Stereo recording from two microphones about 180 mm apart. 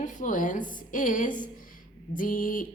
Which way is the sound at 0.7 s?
50° left (ahead or behind).